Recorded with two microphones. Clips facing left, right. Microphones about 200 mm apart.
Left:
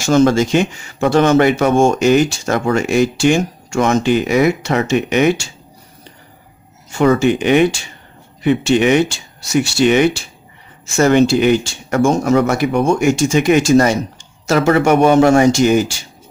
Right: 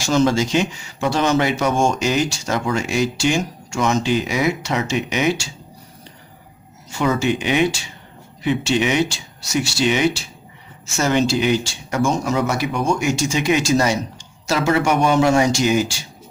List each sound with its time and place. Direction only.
0.0 s speech: 50° left (ahead or behind)
6.9 s speech: 55° left (ahead or behind)